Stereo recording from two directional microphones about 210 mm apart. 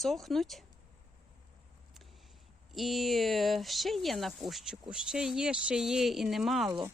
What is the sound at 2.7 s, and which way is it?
Speech, centre (ahead or behind).